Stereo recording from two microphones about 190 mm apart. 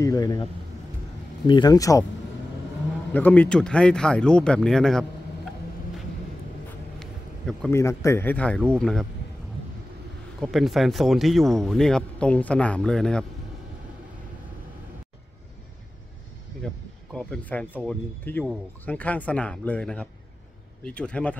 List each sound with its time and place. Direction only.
0.0 s speech: 20° left (ahead or behind)
1.5 s speech: 20° left (ahead or behind)
3.1 s speech: 10° left (ahead or behind)
7.0 s a sound: centre (ahead or behind)
7.7 s speech: 15° left (ahead or behind)
10.4 s speech: centre (ahead or behind)
16.6 s speech: 5° left (ahead or behind)